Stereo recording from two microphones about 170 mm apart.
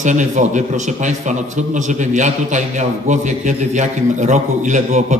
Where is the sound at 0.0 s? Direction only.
45° right (ahead or behind).